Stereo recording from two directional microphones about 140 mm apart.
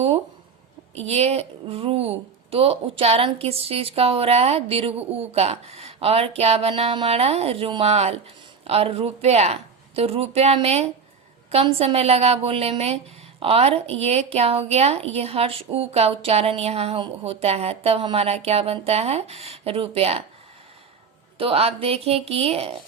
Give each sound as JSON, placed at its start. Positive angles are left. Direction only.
{"t": 0.9, "sound": "a woman's voice", "side_deg": -45}
{"t": 21.3, "sound": "a woman's voice", "side_deg": -40}